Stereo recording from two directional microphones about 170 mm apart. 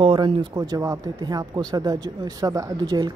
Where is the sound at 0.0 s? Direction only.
30° right (ahead or behind).